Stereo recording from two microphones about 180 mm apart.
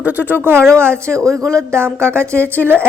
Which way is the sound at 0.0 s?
10° right (ahead or behind).